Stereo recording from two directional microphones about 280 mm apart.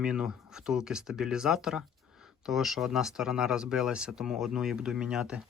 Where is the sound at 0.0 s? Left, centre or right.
Centre.